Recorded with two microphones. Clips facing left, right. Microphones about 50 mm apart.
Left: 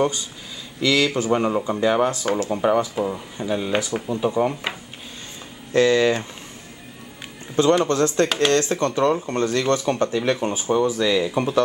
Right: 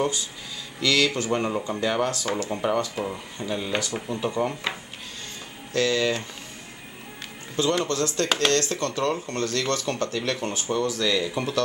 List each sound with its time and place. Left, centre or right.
0.7 s speech: centre
5.7 s speech: left
7.8 s speech: left